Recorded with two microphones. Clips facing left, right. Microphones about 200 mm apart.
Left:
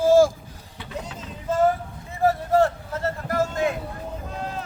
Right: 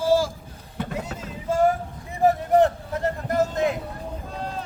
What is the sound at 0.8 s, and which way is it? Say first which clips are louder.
Music: right 10 dB; 45° right (ahead or behind).